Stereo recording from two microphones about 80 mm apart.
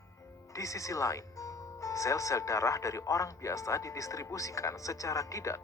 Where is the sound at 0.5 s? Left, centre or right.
Left.